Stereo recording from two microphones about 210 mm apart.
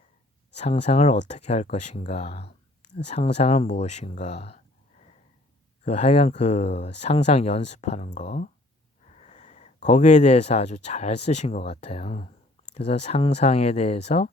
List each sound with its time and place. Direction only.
0.5 s speech: 30° left (ahead or behind)